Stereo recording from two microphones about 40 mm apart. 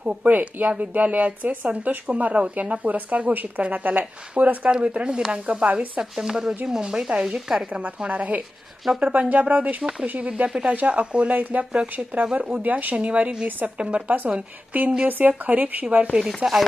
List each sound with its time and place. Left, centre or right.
0.0 s speech: right
0.3 s speech: right
4.8 s speech: right
6.0 s speech: centre
7.7 s speech: right
8.9 s speech: centre
9.3 s speech: right
10.5 s speech: right
10.8 s speech: right
11.0 s speech: right
12.6 s speech: right
16.4 s speech: right